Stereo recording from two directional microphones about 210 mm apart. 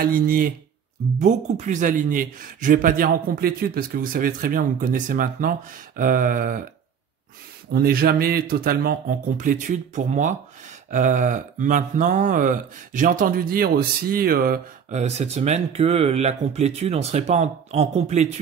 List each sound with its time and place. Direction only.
0.0 s a man's voice: 40° right (ahead or behind)
7.7 s a man's voice: 45° right (ahead or behind); by 18.3 s 30° right (ahead or behind)